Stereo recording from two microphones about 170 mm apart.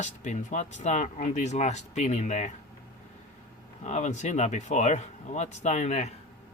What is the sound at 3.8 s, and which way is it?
Speech, 45° left (ahead or behind).